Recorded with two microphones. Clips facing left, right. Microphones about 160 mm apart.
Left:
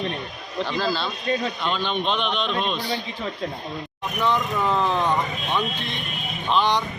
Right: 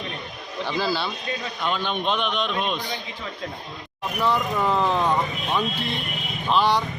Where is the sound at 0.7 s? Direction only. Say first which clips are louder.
Right 1 dB; 10° right (ahead or behind).